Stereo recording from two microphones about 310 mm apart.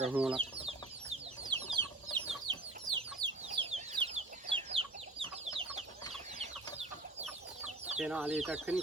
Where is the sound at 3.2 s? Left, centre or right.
Centre.